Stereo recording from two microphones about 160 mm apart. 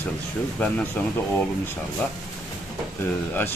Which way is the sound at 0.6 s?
10° left (ahead or behind).